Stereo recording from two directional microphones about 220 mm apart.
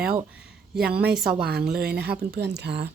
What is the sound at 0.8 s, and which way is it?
A woman's voice, 45° right (ahead or behind).